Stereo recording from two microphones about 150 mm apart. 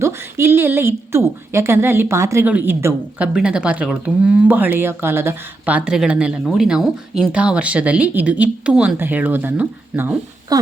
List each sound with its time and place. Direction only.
0.0 s speech: 15° right (ahead or behind)
10.5 s speech: 25° right (ahead or behind)